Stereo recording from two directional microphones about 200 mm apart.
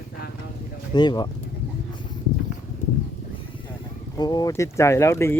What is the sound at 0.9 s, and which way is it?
Speech, 20° left (ahead or behind).